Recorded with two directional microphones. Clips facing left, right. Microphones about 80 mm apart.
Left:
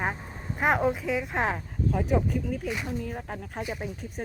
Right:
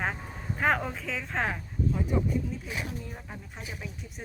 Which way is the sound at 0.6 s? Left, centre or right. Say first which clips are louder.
Left 4 dB; centre.